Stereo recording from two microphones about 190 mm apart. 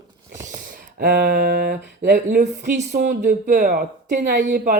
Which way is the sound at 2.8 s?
60° right (ahead or behind).